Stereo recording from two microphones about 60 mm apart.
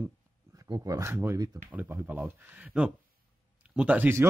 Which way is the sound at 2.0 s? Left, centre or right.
Right.